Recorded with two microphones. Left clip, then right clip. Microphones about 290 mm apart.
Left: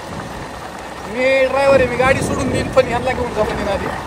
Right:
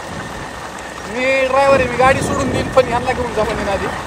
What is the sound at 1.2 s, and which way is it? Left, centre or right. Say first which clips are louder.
Speech: even; centre.